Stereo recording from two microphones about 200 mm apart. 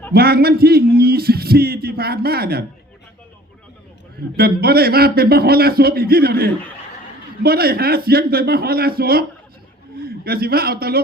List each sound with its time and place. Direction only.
0.1 s a man's voice: 50° right (ahead or behind)
4.4 s a man's voice: 50° right (ahead or behind)